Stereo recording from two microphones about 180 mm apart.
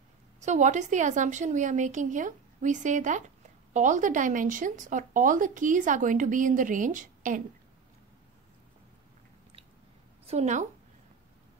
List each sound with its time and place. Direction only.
0.4 s speech: 40° right (ahead or behind)
10.2 s a woman's voice: 40° right (ahead or behind)